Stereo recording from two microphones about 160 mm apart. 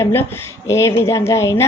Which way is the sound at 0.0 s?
15° left (ahead or behind).